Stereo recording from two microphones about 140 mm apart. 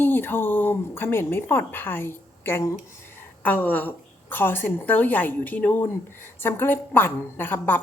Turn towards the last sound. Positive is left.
turn(degrees=15)  # may be behind; listen again after turning